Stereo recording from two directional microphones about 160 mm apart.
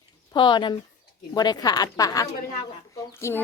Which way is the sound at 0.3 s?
30° left (ahead or behind).